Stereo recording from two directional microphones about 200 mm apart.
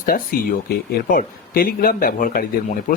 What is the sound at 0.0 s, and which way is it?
Speech, 45° left (ahead or behind).